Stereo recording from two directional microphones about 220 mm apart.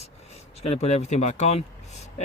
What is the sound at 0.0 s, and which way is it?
Speech, 30° left (ahead or behind).